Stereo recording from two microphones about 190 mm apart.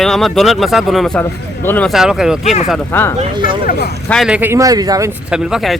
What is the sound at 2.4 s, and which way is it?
Speech, 35° left (ahead or behind).